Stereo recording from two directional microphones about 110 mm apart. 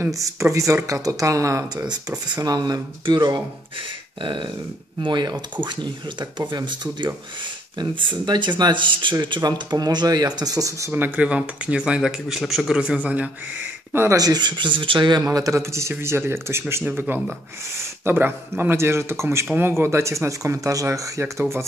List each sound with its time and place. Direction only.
0.0 s speech: 30° right (ahead or behind)
1.9 s speech: 40° right (ahead or behind)
10.9 s speech: 15° right (ahead or behind)
13.9 s speech: 30° right (ahead or behind)
18.0 s speech: 20° right (ahead or behind)